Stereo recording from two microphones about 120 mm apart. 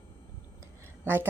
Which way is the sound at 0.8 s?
20° right (ahead or behind).